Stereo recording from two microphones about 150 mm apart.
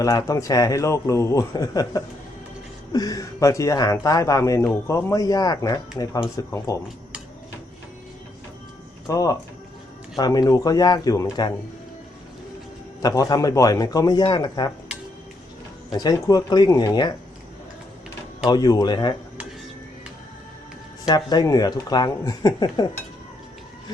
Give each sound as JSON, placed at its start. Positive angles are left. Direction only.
{"t": 0.0, "sound": "a man's voice", "side_deg": 20}
{"t": 9.0, "sound": "a man's voice", "side_deg": 20}
{"t": 13.0, "sound": "a man's voice", "side_deg": 25}
{"t": 15.9, "sound": "a man's voice", "side_deg": 25}
{"t": 18.4, "sound": "a man's voice", "side_deg": 25}
{"t": 21.2, "sound": "a man's voice", "side_deg": 25}